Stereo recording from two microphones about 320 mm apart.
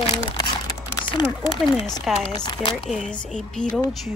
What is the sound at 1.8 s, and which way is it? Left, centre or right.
Speech, centre.